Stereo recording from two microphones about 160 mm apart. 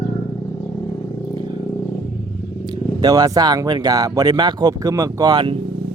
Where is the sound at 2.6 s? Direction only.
25° right (ahead or behind).